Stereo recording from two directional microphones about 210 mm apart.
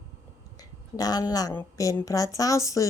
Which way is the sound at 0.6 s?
15° left (ahead or behind).